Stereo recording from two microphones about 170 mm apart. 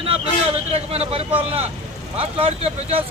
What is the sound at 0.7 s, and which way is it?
Speech, 35° right (ahead or behind).